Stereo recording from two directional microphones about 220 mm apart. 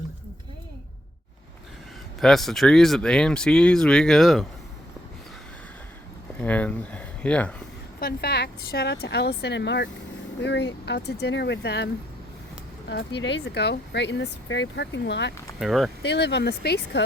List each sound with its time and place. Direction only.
2.2 s speech: centre (ahead or behind)
6.4 s speech: 5° left (ahead or behind)
7.9 s speech: 45° left (ahead or behind)
12.9 s speech: 50° left (ahead or behind)
15.5 s speech: centre (ahead or behind)
16.0 s speech: 50° left (ahead or behind)